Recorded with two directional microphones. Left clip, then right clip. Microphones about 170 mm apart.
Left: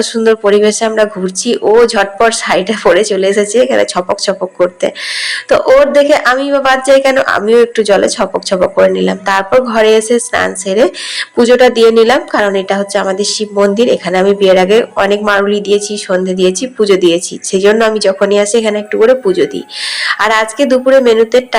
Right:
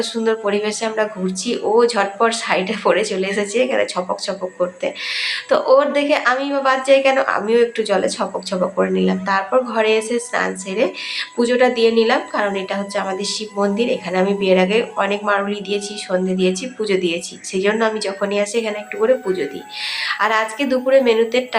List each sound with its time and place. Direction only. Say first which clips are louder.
0.0 s a woman's voice: left 9 dB; 40° left (ahead or behind)